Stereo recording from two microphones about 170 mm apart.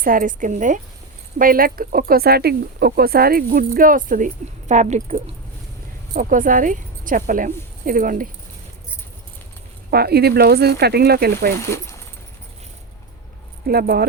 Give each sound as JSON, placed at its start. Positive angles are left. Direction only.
{"t": 0.0, "sound": "a woman's voice", "side_deg": -55}
{"t": 6.1, "sound": "a woman's voice", "side_deg": -50}
{"t": 9.9, "sound": "speech", "side_deg": -70}
{"t": 11.6, "sound": "speech", "side_deg": 15}
{"t": 13.7, "sound": "speech", "side_deg": -65}